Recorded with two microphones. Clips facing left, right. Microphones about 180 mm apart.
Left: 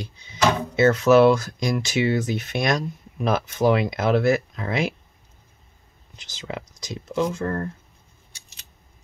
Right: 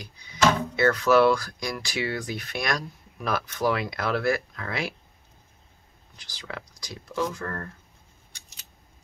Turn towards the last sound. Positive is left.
turn(degrees=25)  # may be behind; listen again after turning